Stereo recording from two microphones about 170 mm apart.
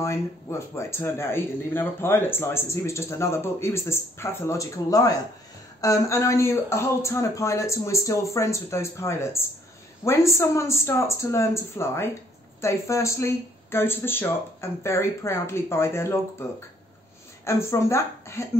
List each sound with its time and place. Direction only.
0.0 s speech: 15° left (ahead or behind)